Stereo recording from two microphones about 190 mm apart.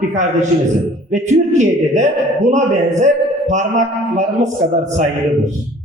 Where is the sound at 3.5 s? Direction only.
40° right (ahead or behind).